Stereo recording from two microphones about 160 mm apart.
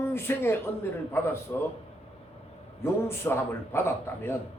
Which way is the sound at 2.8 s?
15° left (ahead or behind).